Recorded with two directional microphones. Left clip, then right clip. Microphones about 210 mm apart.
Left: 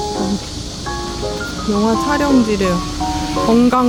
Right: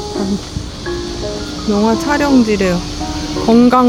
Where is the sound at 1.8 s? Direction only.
15° right (ahead or behind).